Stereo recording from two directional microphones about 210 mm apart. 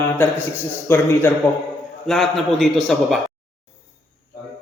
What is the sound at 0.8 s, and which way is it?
A man's voice, 10° left (ahead or behind).